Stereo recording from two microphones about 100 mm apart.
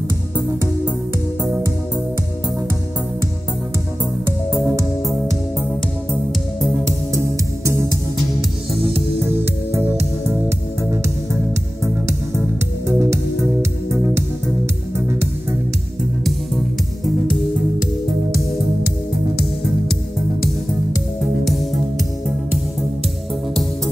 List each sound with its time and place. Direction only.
6.6 s music: 30° right (ahead or behind)
9.2 s music: 20° right (ahead or behind)
12.8 s music: 30° right (ahead or behind)